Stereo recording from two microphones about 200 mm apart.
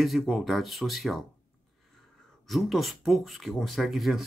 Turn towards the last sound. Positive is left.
turn(degrees=0)  # may be behind; listen again after turning